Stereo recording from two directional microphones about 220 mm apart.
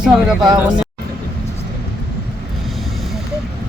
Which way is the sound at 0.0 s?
5° right (ahead or behind).